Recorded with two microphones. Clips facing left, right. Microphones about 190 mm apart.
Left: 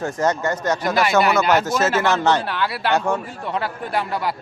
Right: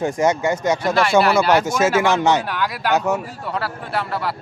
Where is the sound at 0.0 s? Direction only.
10° right (ahead or behind).